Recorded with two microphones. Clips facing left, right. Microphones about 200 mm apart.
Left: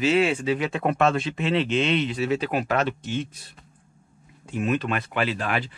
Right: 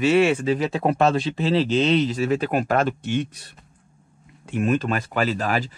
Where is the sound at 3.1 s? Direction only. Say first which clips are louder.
Right 4 dB; 70° right (ahead or behind).